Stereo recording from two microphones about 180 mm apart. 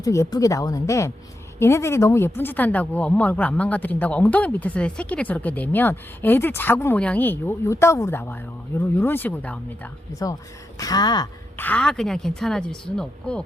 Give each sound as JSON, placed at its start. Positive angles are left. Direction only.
{"t": 0.0, "sound": "a woman's voice", "side_deg": 20}
{"t": 11.5, "sound": "speech", "side_deg": 10}